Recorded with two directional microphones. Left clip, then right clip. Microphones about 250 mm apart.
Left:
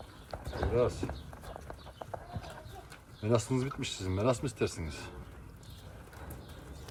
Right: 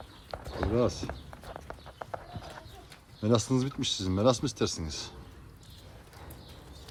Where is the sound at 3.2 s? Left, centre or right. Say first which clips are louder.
Right 3 dB; right.